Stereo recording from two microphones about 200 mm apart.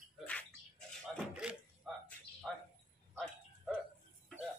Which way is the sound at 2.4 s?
5° left (ahead or behind).